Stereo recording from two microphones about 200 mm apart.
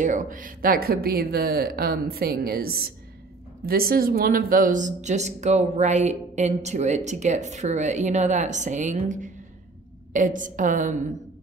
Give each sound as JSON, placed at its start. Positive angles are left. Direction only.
{"t": 0.0, "sound": "speech", "side_deg": -40}